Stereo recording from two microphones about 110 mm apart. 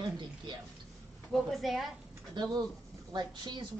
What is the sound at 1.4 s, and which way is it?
Speech, centre (ahead or behind).